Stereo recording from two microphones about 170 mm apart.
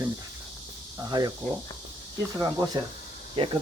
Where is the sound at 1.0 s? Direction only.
25° right (ahead or behind).